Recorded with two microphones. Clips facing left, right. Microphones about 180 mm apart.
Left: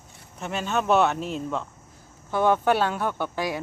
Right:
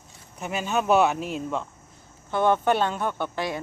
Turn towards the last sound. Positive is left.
turn(degrees=10)  # may be behind; listen again after turning